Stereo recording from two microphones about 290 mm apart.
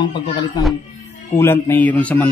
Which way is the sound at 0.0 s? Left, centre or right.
Centre.